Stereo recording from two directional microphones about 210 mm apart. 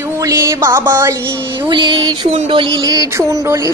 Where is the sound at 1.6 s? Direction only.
20° right (ahead or behind).